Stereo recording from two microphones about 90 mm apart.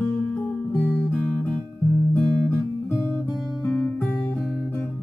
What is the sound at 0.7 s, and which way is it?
Guitar, 15° left (ahead or behind).